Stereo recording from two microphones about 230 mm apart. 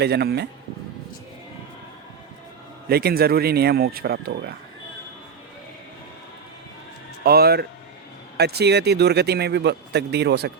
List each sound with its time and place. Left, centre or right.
0.0 s speech: right
2.9 s speech: right
7.3 s speech: right